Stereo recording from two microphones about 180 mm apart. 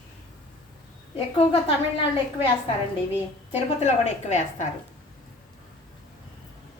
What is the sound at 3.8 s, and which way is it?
Speech, 40° left (ahead or behind).